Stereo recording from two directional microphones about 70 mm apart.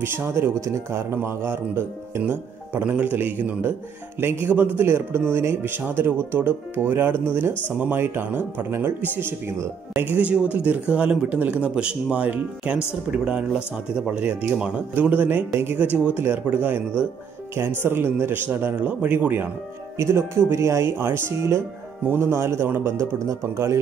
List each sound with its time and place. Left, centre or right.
0.0 s speech: right
10.1 s speech: centre
18.9 s speech: right
20.0 s speech: right
22.7 s speech: right
22.9 s a man's voice: right
23.4 s a man's voice: right